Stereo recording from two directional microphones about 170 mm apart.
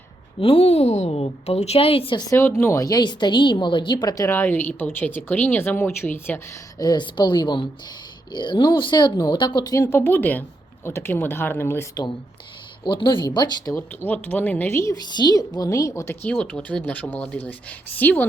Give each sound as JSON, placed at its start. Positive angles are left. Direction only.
{"t": 0.3, "sound": "a woman's voice", "side_deg": 35}
{"t": 13.7, "sound": "a woman's voice", "side_deg": 10}
{"t": 16.3, "sound": "a woman's voice", "side_deg": 5}